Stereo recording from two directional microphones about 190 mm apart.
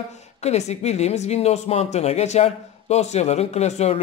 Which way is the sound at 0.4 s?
35° left (ahead or behind).